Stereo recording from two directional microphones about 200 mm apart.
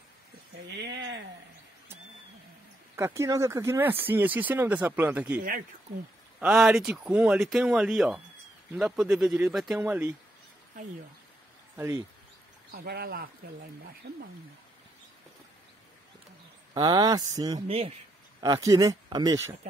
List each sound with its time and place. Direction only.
0.7 s speech: 60° right (ahead or behind)
3.0 s speech: 15° right (ahead or behind)
6.4 s speech: 5° right (ahead or behind)
11.7 s speech: 10° right (ahead or behind)
12.7 s speech: 50° right (ahead or behind)
16.7 s speech: 20° right (ahead or behind)
17.6 s speech: 30° right (ahead or behind)
18.4 s speech: 20° right (ahead or behind)